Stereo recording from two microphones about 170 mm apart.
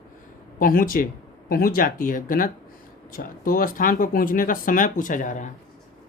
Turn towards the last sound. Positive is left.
turn(degrees=50)  # may be behind; listen again after turning